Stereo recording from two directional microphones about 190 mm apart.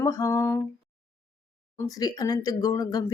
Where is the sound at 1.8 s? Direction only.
20° left (ahead or behind).